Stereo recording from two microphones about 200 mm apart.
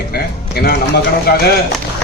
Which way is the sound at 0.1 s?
50° left (ahead or behind).